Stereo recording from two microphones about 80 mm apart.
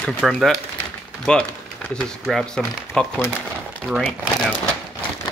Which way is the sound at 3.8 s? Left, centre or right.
Centre.